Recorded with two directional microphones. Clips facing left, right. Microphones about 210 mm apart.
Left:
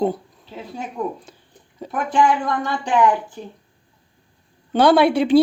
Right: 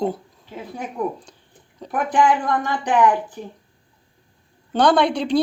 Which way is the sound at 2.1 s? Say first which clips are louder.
Even; 15° right (ahead or behind).